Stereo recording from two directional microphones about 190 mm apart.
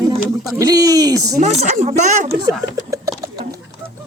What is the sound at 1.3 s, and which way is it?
Speech, 35° right (ahead or behind).